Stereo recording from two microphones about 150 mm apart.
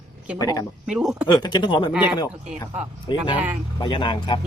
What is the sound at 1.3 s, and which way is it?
Speech, 30° left (ahead or behind).